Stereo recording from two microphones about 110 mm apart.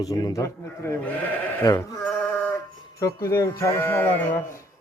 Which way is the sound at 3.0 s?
25° left (ahead or behind).